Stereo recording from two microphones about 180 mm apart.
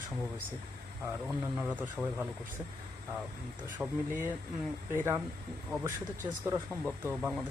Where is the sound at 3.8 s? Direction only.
5° right (ahead or behind).